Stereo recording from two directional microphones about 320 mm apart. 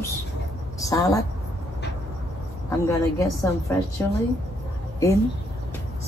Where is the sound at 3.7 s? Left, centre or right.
Centre.